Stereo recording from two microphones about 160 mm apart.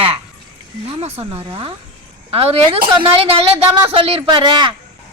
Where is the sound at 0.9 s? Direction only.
40° right (ahead or behind).